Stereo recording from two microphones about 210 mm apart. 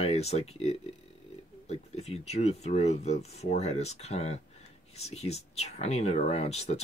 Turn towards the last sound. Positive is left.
turn(degrees=30)  # may be behind; listen again after turning